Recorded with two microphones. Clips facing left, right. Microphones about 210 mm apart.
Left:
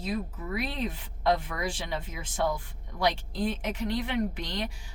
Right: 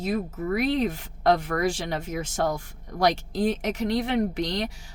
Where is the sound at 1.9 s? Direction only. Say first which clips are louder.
Right 5 dB; 75° right (ahead or behind).